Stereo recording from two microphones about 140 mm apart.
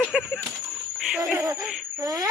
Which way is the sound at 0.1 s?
5° right (ahead or behind).